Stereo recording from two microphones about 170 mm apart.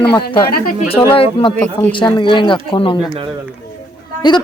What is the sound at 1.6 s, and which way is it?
Speech, 10° left (ahead or behind).